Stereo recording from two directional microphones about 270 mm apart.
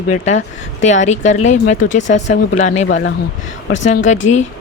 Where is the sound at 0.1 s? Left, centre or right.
Left.